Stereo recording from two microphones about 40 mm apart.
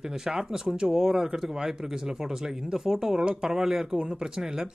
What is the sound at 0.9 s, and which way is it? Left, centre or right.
Speech, centre.